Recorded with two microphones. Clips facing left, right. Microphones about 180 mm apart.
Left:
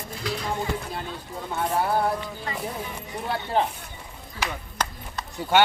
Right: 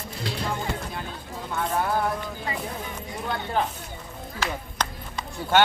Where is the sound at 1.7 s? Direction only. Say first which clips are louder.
Left 2 dB; 30° left (ahead or behind).